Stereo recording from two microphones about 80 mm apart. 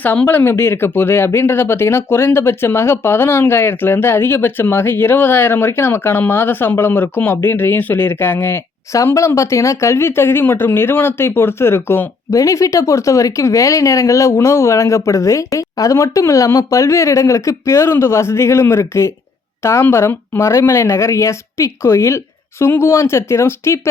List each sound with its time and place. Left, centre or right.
0.3 s speech: left
12.4 s speech: left